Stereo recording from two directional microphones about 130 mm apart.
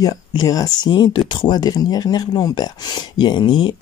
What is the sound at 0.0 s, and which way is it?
Speech, 30° left (ahead or behind).